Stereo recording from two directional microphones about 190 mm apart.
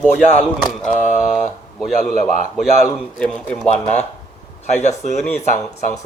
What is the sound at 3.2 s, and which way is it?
Mantra, centre (ahead or behind).